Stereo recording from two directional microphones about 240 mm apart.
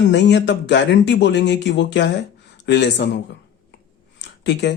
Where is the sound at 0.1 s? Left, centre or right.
Left.